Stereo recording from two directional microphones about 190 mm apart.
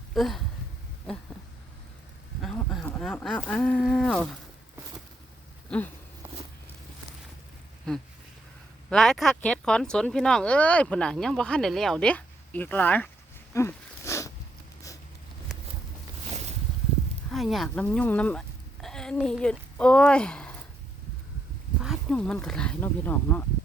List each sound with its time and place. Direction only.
0.1 s speech: centre (ahead or behind)
2.4 s speech: centre (ahead or behind)
8.9 s speech: centre (ahead or behind)
13.5 s a sound: 15° left (ahead or behind)
15.5 s a sound: centre (ahead or behind)
17.3 s speech: centre (ahead or behind)
21.8 s speech: centre (ahead or behind)